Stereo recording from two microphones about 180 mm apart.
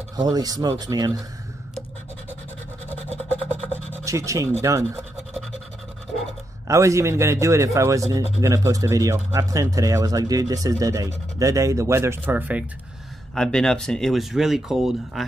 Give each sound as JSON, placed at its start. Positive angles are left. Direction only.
{"t": 0.1, "sound": "speech", "side_deg": -20}
{"t": 3.3, "sound": "a sound", "side_deg": 10}
{"t": 3.9, "sound": "rub", "side_deg": -15}
{"t": 4.6, "sound": "speech", "side_deg": -15}
{"t": 6.7, "sound": "speech", "side_deg": -15}
{"t": 13.3, "sound": "speech", "side_deg": 5}